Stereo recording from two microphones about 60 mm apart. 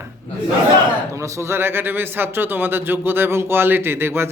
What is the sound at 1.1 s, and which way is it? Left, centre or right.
A man's voice, right.